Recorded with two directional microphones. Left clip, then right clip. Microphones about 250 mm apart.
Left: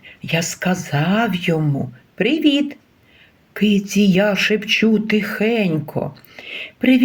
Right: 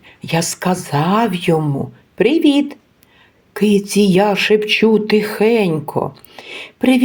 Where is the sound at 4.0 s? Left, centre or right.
Right.